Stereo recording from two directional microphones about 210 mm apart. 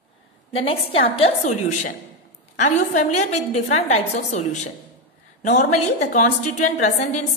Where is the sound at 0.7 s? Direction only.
25° left (ahead or behind).